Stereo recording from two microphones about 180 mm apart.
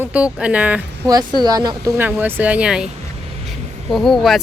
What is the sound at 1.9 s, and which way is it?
Speech, 10° right (ahead or behind).